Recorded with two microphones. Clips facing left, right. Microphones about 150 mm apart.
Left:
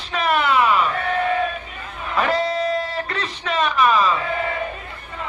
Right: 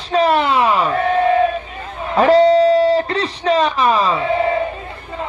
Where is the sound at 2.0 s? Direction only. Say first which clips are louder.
Right 10 dB; 35° right (ahead or behind).